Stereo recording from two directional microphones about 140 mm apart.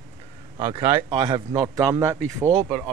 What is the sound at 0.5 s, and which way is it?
Speech, 40° right (ahead or behind).